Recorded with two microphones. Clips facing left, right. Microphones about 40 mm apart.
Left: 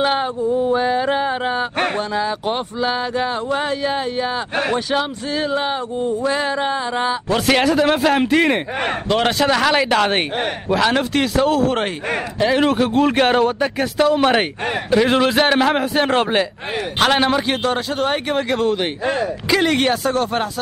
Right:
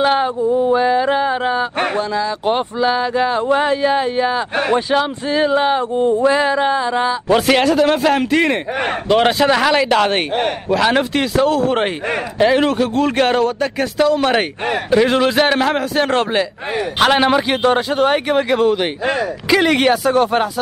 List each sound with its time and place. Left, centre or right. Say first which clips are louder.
0.0 s a man's voice: right 3 dB; centre
3.5 s a man's voice: right 5 dB; centre
5.9 s a sound: right 5 dB; right
6.2 s a man's voice: right 5 dB; centre
8.8 s a man's voice: right 5 dB; centre
17.0 s a man's voice: right 3 dB; centre